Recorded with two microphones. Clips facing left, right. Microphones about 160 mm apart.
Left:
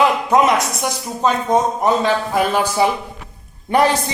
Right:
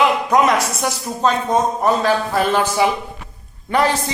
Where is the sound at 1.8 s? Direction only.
15° left (ahead or behind).